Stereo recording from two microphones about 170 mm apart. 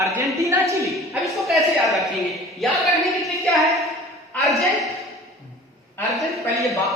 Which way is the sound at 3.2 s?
Centre (ahead or behind).